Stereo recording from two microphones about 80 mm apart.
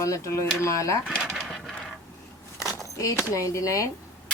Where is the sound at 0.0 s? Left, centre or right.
Left.